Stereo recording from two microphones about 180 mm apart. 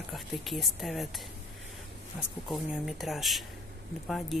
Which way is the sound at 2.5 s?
Centre (ahead or behind).